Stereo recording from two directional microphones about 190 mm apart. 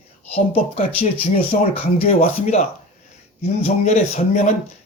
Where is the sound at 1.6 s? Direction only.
35° left (ahead or behind).